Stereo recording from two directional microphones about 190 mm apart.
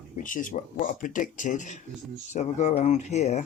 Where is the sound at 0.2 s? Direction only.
45° left (ahead or behind).